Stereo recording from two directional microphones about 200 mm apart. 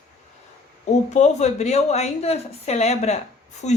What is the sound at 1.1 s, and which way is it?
A woman's voice, 35° left (ahead or behind).